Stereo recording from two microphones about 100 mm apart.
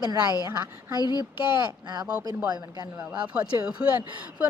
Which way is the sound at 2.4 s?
45° right (ahead or behind).